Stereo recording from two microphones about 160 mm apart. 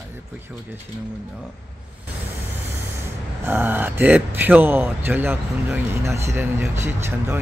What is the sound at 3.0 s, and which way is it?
Speech, 15° right (ahead or behind).